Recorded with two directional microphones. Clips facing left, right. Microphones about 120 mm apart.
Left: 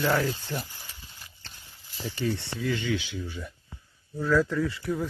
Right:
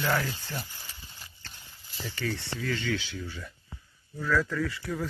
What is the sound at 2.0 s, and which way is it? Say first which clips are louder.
Speech: left 4 dB; 20° left (ahead or behind).